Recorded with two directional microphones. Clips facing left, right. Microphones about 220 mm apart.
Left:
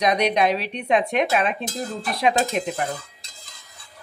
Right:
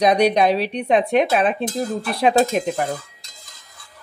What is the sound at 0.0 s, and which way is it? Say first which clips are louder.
Speech: right 4 dB; 35° right (ahead or behind).